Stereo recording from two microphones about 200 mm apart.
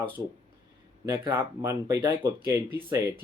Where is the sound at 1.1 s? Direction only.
15° right (ahead or behind).